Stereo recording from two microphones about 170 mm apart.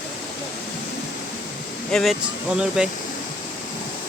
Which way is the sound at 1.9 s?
Centre (ahead or behind).